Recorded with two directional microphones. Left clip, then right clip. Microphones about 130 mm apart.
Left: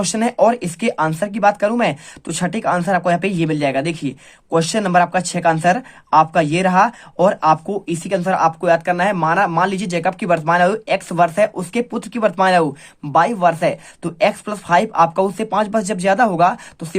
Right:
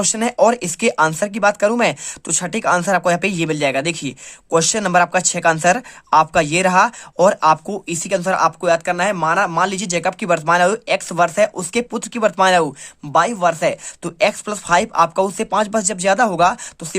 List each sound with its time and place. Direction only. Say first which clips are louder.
0.0 s speech: even; 35° right (ahead or behind)